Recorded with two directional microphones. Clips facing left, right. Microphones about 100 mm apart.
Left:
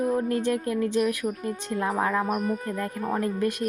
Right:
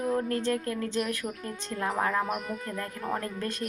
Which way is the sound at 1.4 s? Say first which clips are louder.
Left 4 dB; 20° left (ahead or behind).